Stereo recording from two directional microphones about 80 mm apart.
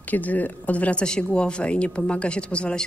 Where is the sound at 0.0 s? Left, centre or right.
Centre.